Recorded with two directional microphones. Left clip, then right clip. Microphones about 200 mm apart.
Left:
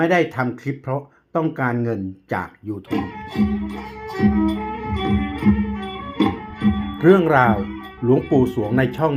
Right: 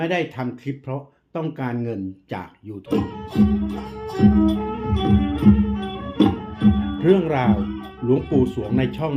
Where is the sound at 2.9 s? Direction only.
50° right (ahead or behind).